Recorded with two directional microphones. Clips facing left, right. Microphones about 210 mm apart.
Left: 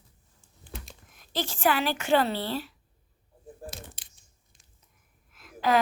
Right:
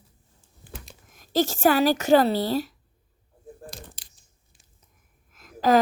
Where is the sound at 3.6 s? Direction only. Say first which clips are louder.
Left 3 dB; centre (ahead or behind).